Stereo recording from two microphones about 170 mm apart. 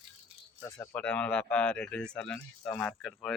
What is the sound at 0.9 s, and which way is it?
Speech, 5° left (ahead or behind).